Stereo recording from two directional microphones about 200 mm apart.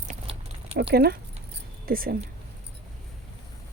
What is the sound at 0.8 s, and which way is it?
Speech, 55° right (ahead or behind).